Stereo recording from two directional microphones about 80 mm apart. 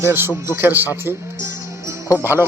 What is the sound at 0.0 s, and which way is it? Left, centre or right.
A man's voice, right.